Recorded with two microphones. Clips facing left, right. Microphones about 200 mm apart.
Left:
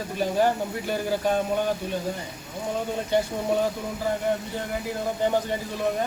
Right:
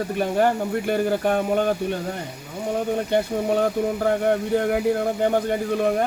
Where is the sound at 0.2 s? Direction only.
55° right (ahead or behind).